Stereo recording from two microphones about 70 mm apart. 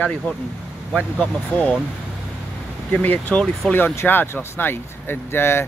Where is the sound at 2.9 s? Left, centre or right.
Left.